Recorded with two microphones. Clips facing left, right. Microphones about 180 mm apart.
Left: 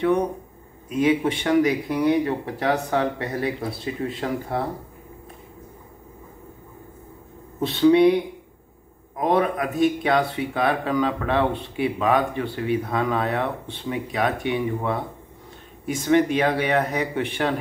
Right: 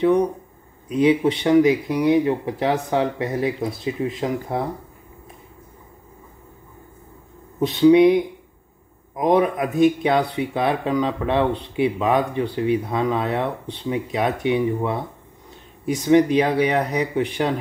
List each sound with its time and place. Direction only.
0.8 s speech: 20° right (ahead or behind)
7.6 s speech: 15° right (ahead or behind)
9.2 s speech: 15° right (ahead or behind)
16.1 s speech: 15° right (ahead or behind)